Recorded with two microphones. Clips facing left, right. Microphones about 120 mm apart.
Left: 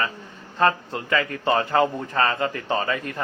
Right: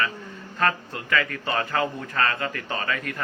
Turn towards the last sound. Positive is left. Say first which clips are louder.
# left 4 dB
turn(degrees=25)  # may be behind; listen again after turning